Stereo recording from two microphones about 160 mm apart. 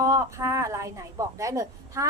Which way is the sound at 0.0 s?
20° right (ahead or behind).